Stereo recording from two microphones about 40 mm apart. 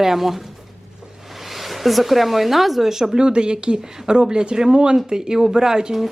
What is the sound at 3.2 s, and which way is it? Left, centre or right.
Speech, right.